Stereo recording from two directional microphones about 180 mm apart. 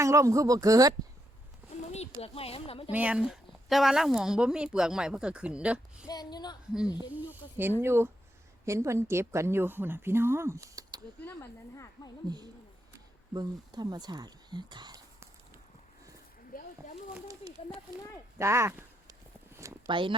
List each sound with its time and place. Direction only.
0.0 s speech: 15° right (ahead or behind)
2.2 s speech: 30° left (ahead or behind)
2.9 s speech: 5° right (ahead or behind)
6.1 s speech: 20° left (ahead or behind)
7.1 s a woman's voice: 10° right (ahead or behind)
11.2 s speech: 15° left (ahead or behind)
13.3 s speech: 20° right (ahead or behind)
16.5 s a sound: 50° left (ahead or behind)
18.3 s a sound: 15° right (ahead or behind)
19.9 s speech: 30° right (ahead or behind)